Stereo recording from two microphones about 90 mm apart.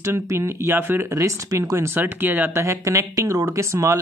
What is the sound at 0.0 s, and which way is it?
Speech, 35° right (ahead or behind).